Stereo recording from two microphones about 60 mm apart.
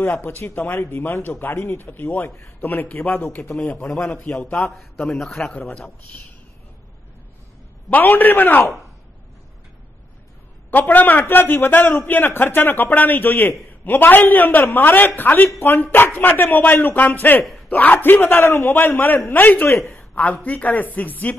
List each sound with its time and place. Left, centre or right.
0.4 s a man's voice: left
2.6 s a man's voice: left
3.5 s speech: centre
4.5 s a man's voice: left
5.1 s a man's voice: centre
5.5 s speech: left
7.9 s a man's voice: left
10.7 s a man's voice: left
18.8 s a man's voice: left